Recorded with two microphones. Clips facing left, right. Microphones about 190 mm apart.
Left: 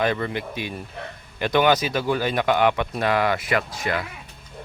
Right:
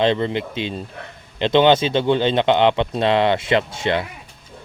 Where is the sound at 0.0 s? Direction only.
25° right (ahead or behind).